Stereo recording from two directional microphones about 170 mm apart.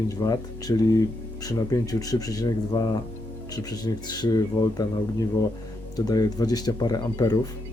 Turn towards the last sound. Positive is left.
turn(degrees=20)  # may be behind; listen again after turning